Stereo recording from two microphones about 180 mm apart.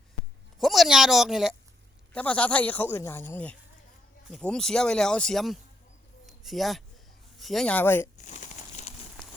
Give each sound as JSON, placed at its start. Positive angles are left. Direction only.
{"t": 0.6, "sound": "speech", "side_deg": 0}
{"t": 6.2, "sound": "a sound", "side_deg": 0}
{"t": 7.3, "sound": "speech", "side_deg": 0}
{"t": 8.2, "sound": "crumpling", "side_deg": 40}